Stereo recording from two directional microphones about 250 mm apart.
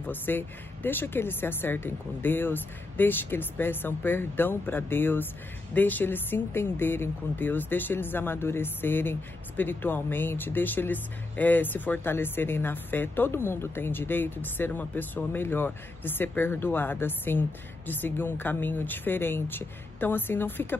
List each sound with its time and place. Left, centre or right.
0.0 s speech: centre